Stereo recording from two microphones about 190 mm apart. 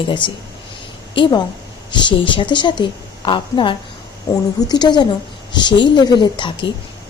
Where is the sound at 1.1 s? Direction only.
25° left (ahead or behind).